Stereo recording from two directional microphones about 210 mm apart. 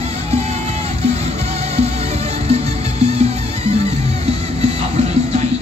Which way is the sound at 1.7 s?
30° right (ahead or behind).